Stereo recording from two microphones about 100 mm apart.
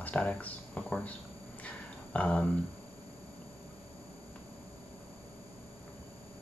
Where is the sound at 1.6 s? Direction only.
15° left (ahead or behind).